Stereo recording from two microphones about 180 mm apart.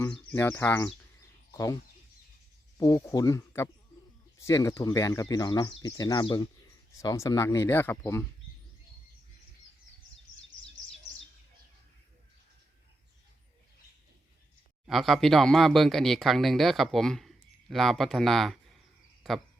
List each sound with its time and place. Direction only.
0.0 s speech: 10° left (ahead or behind)
14.8 s speech: centre (ahead or behind)